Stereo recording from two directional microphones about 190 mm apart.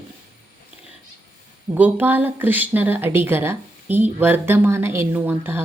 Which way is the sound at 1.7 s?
10° right (ahead or behind).